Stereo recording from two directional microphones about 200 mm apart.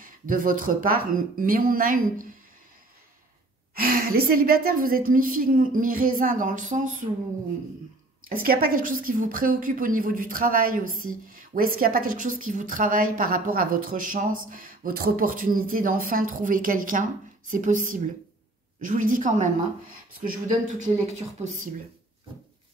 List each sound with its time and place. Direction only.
0.0 s speech: 45° right (ahead or behind)
3.7 s speech: 45° right (ahead or behind)
8.5 s a woman's voice: 45° right (ahead or behind)